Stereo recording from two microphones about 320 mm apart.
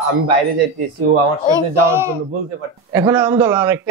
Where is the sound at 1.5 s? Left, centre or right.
Centre.